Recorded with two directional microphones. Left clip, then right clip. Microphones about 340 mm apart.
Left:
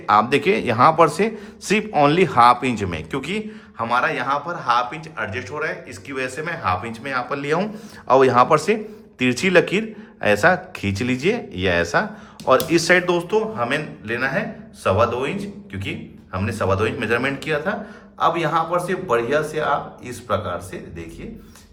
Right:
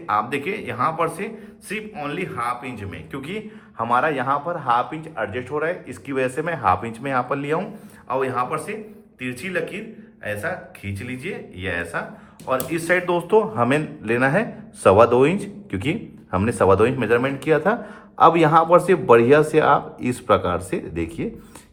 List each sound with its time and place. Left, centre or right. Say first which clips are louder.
0.0 s speech: left 6 dB; centre